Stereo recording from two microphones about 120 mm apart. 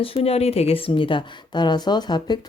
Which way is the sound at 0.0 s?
50° left (ahead or behind).